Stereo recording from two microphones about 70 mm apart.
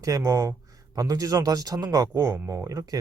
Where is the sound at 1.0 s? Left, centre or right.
Right.